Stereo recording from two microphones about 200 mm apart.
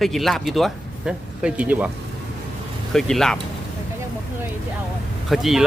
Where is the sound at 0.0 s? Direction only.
Centre (ahead or behind).